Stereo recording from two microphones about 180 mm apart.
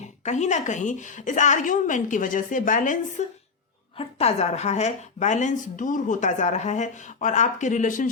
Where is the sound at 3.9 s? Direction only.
35° left (ahead or behind).